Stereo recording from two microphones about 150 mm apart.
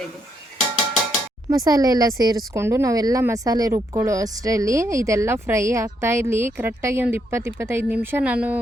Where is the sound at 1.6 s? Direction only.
25° right (ahead or behind).